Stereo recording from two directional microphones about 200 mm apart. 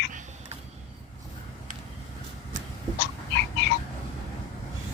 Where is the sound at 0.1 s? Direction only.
40° right (ahead or behind).